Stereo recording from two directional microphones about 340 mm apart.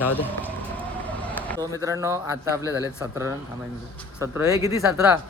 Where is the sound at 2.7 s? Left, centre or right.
Centre.